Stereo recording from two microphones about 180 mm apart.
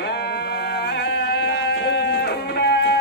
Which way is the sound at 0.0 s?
70° left (ahead or behind).